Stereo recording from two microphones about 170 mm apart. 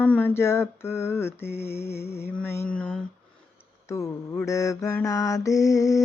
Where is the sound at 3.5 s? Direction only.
15° left (ahead or behind).